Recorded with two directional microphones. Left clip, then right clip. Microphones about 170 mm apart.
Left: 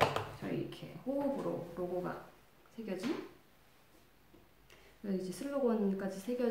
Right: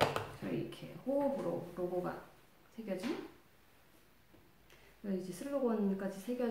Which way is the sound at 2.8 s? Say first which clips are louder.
Even; 15° left (ahead or behind).